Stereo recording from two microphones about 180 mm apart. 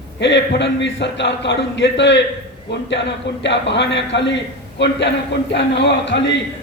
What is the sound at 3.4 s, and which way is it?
A man's voice, 80° left.